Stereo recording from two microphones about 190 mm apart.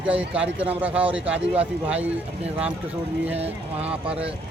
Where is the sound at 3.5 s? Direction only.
10° right (ahead or behind).